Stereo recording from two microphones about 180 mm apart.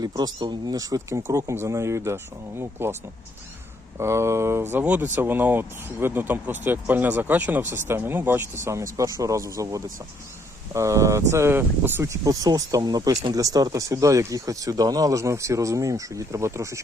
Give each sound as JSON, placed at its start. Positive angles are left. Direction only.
{"t": 0.0, "sound": "speech", "side_deg": -20}
{"t": 3.9, "sound": "speech", "side_deg": -15}